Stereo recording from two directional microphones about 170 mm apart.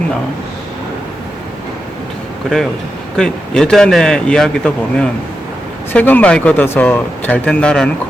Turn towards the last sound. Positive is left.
turn(degrees=5)  # may be behind; listen again after turning